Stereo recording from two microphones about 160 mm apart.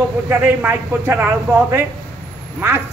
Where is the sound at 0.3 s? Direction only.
10° right (ahead or behind).